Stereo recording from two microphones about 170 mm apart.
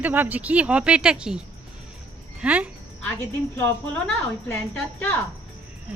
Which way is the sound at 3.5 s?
10° left (ahead or behind).